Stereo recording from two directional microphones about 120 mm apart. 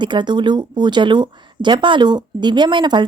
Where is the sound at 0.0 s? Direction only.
40° right (ahead or behind).